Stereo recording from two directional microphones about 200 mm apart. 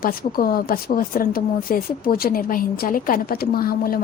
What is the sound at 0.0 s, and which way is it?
Speech, 45° left (ahead or behind).